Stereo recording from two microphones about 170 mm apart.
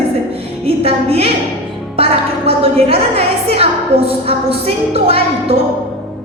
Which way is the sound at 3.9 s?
35° right (ahead or behind).